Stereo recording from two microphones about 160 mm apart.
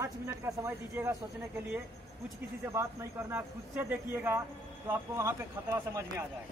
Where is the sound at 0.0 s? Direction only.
20° right (ahead or behind).